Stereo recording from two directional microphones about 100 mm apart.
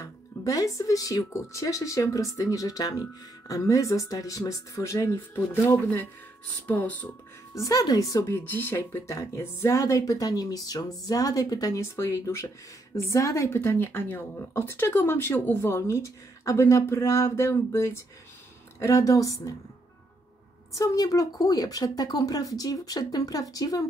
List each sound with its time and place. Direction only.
0.0 s speech: 35° left (ahead or behind); by 7.1 s 15° left (ahead or behind)
7.5 s speech: 35° left (ahead or behind)
8.4 s speech: 20° left (ahead or behind)
20.7 s speech: 35° left (ahead or behind)